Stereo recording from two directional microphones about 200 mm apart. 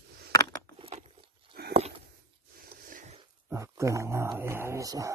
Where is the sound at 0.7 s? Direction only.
30° right (ahead or behind).